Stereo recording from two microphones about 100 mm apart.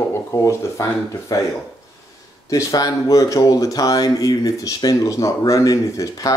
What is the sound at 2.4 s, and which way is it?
Speech, 35° left (ahead or behind).